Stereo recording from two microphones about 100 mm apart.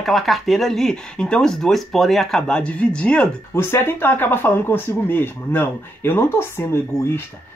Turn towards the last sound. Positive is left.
turn(degrees=25)  # may be behind; listen again after turning